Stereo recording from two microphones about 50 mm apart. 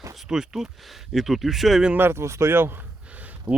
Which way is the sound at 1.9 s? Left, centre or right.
Right.